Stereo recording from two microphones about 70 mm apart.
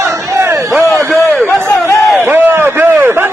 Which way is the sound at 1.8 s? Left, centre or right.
Left.